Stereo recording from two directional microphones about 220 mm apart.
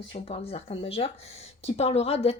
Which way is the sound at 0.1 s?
25° left (ahead or behind).